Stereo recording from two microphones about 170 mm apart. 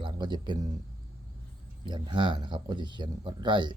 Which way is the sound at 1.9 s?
25° right (ahead or behind).